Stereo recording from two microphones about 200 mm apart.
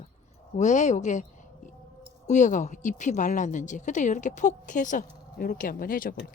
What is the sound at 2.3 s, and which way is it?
Speech, 40° left (ahead or behind).